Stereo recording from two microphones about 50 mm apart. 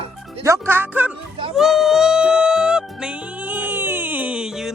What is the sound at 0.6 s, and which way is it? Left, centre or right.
Speech, right.